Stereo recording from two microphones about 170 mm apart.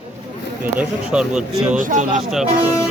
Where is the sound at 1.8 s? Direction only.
50° right (ahead or behind).